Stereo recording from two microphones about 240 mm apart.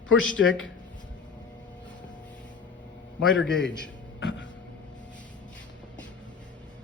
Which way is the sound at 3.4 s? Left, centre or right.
Centre.